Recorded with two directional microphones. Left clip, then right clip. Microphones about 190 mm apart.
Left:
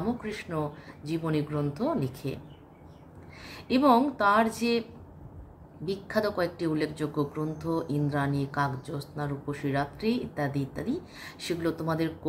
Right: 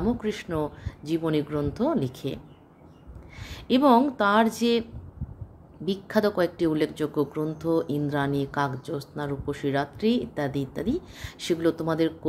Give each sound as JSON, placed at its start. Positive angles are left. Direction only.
{"t": 0.2, "sound": "a woman's voice", "side_deg": -50}
{"t": 3.4, "sound": "a woman's voice", "side_deg": -50}
{"t": 5.9, "sound": "a woman's voice", "side_deg": -50}